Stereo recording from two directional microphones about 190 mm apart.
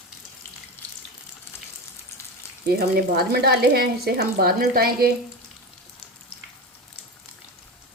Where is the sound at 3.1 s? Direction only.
55° right (ahead or behind).